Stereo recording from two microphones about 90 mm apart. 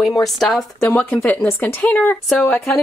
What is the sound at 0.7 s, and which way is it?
Speech, 20° left (ahead or behind).